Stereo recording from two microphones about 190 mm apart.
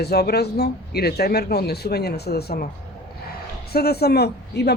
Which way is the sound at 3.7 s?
55° left (ahead or behind).